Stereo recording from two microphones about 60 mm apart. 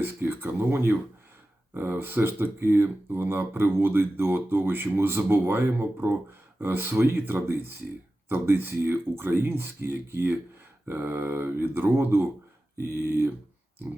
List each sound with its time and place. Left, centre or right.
0.0 s speech: right